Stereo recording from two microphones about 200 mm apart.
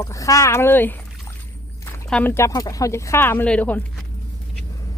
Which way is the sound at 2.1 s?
10° left (ahead or behind).